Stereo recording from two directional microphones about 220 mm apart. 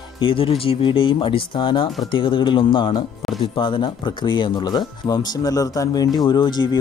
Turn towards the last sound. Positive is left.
turn(degrees=20)  # may be behind; listen again after turning